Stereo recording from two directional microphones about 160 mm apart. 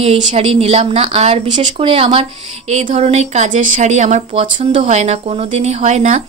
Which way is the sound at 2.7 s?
45° right (ahead or behind).